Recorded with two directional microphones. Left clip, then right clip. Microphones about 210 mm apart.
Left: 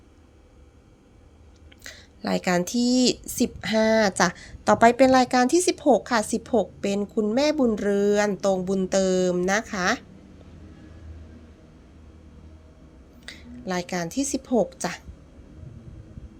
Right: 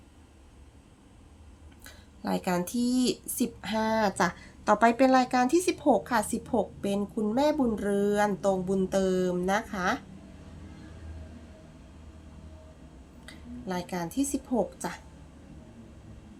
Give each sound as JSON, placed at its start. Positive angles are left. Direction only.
{"t": 1.8, "sound": "speech", "side_deg": 25}
{"t": 13.2, "sound": "a woman's voice", "side_deg": 25}